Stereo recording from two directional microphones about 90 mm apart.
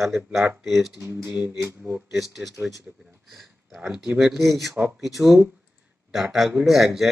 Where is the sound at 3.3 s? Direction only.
Centre (ahead or behind).